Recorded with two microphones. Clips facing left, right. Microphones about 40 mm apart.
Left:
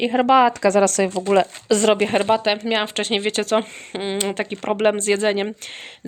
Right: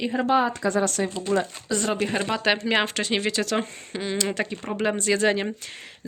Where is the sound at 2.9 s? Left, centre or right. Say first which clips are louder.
Left 3 dB; left.